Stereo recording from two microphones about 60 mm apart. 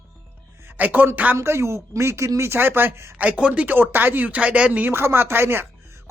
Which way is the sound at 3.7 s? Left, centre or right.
Right.